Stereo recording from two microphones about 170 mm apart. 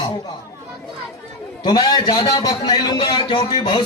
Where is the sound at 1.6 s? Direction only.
25° left (ahead or behind).